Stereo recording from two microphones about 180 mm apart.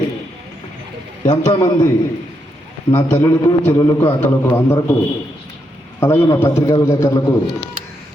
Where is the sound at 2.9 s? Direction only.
30° left (ahead or behind).